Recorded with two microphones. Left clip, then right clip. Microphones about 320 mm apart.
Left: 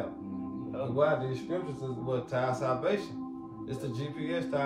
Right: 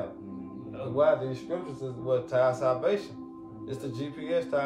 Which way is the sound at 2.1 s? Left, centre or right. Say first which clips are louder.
Right 6 dB; centre.